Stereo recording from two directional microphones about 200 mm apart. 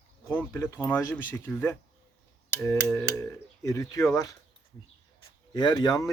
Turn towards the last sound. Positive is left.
turn(degrees=20)  # may be behind; listen again after turning